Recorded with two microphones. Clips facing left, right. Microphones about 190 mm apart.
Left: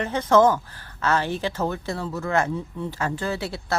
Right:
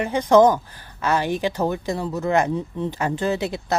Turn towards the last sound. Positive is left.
turn(degrees=-20)  # may be behind; listen again after turning